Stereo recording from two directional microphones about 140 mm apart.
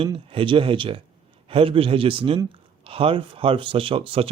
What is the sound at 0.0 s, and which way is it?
Speech, 40° right (ahead or behind).